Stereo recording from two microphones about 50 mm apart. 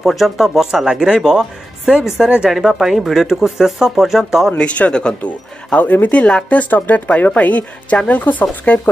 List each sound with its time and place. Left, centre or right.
0.0 s speech: centre
4.6 s speech: left
5.8 s a woman's voice: left